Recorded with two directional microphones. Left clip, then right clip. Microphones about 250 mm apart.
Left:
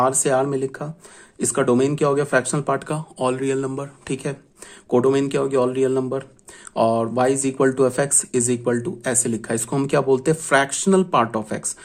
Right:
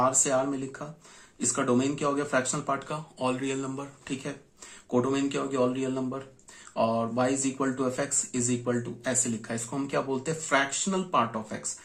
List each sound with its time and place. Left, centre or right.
0.0 s speech: left